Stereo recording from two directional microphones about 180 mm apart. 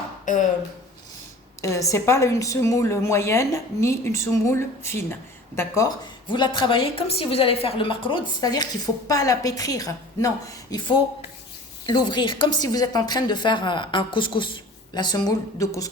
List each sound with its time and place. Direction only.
0.3 s speech: 45° left (ahead or behind)
1.6 s a woman's voice: 15° left (ahead or behind)